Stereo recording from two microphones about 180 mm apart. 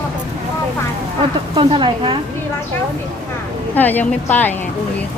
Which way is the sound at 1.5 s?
25° right (ahead or behind).